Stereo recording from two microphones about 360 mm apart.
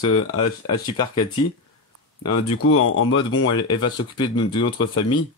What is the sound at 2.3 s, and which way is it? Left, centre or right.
Speech, left.